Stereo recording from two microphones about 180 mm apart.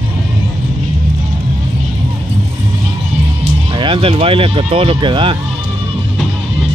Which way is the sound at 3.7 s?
30° right (ahead or behind).